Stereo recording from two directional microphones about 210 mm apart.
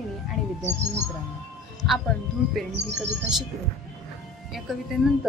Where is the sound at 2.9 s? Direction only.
5° right (ahead or behind).